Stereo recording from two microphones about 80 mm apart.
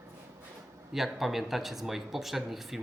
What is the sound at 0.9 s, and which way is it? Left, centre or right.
Speech, centre.